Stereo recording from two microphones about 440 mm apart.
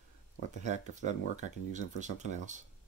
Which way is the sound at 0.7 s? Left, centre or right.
Centre.